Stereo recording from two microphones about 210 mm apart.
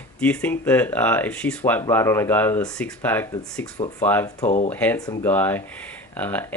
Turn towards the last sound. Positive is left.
turn(degrees=10)  # may be behind; listen again after turning